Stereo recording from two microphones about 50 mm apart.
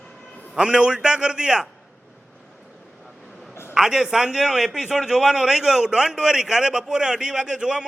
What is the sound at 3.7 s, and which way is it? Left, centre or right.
A man's voice, centre.